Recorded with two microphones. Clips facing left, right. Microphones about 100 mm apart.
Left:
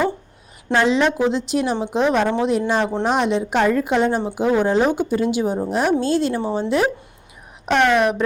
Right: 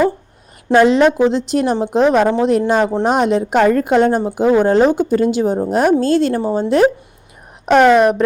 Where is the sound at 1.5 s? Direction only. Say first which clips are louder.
Right 5 dB; 50° right (ahead or behind).